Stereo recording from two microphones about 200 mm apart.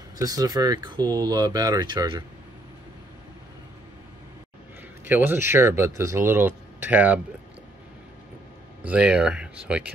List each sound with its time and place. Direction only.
0.2 s speech: 20° right (ahead or behind)
5.0 s speech: 10° right (ahead or behind)
8.8 s speech: 5° right (ahead or behind)